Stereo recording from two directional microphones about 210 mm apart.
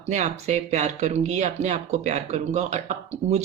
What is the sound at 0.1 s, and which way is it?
Speech, 35° right (ahead or behind).